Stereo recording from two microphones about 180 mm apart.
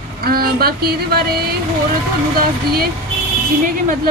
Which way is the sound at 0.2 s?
55° right (ahead or behind).